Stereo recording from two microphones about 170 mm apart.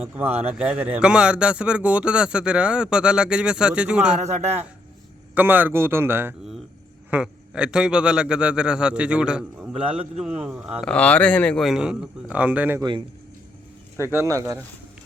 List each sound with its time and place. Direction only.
0.0 s a man's voice: 10° right (ahead or behind)
4.2 s a man's voice: 40° right (ahead or behind)
5.3 s a man's voice: 10° right (ahead or behind)
10.8 s a man's voice: 10° left (ahead or behind); by 12.8 s 10° right (ahead or behind)
13.9 s a man's voice: 15° right (ahead or behind)